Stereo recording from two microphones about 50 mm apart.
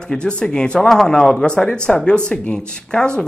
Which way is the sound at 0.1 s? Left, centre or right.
Centre.